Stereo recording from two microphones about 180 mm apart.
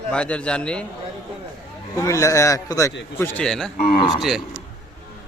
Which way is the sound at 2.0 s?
15° left (ahead or behind).